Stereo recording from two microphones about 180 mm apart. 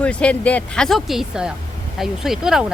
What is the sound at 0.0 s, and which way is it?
Speech, 5° left (ahead or behind).